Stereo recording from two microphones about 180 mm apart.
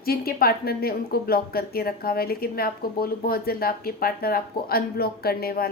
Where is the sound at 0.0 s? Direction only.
55° left (ahead or behind).